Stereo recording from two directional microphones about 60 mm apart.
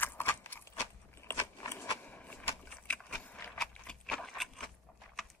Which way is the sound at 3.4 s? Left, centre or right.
Left.